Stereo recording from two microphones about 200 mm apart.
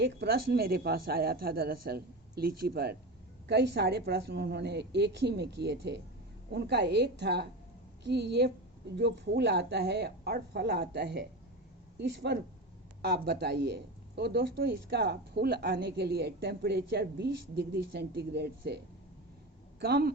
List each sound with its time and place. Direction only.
0.0 s a man's voice: 55° right (ahead or behind)
19.8 s a man's voice: 55° right (ahead or behind)